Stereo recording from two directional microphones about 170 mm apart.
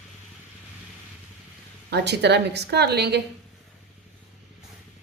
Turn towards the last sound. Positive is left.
turn(degrees=-75)  # may be behind; listen again after turning